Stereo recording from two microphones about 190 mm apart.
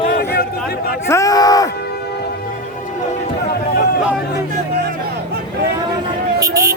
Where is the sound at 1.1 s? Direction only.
20° left (ahead or behind).